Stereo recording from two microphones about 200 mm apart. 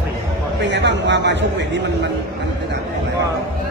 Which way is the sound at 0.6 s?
60° right (ahead or behind).